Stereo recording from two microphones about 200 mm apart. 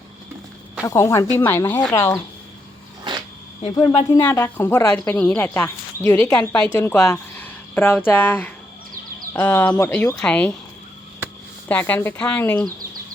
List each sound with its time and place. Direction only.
0.9 s speech: 15° left (ahead or behind)
3.0 s a sound: 20° right (ahead or behind)
3.6 s a woman's voice: 30° left (ahead or behind)
4.1 s speech: 20° left (ahead or behind)
11.7 s speech: 10° left (ahead or behind)